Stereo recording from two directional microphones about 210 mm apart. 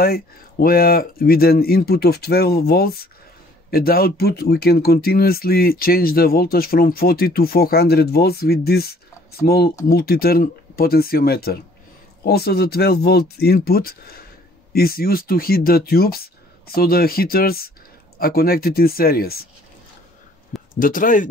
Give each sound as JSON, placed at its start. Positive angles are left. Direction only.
{"t": 0.0, "sound": "speech", "side_deg": 45}
{"t": 20.8, "sound": "speech", "side_deg": 40}